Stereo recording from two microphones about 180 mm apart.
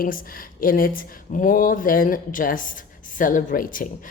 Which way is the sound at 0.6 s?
50° left (ahead or behind).